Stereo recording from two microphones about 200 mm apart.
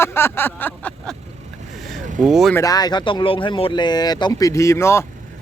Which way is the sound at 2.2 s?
Centre (ahead or behind).